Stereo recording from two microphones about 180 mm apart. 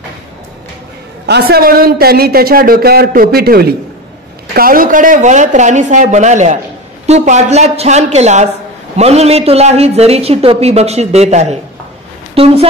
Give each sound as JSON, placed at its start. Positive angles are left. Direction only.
{"t": 1.2, "sound": "a man's voice", "side_deg": -65}